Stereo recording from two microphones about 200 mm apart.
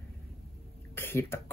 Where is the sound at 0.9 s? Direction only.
10° left (ahead or behind).